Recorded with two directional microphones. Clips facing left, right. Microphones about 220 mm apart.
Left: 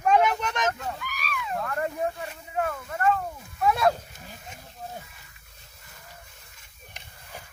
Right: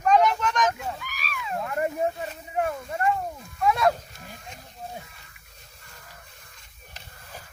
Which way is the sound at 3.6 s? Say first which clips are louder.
Even; 5° left (ahead or behind).